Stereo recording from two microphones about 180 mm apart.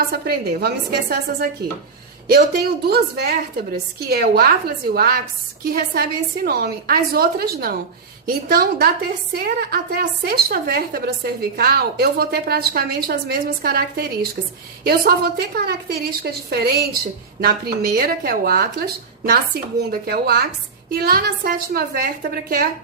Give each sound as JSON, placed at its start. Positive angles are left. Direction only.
{"t": 0.1, "sound": "a woman's voice", "side_deg": -60}
{"t": 2.8, "sound": "a woman's voice", "side_deg": -60}